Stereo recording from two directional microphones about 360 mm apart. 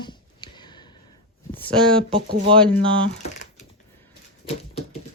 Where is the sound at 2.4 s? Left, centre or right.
Centre.